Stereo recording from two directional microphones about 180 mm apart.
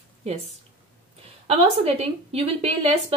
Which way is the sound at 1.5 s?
35° right (ahead or behind).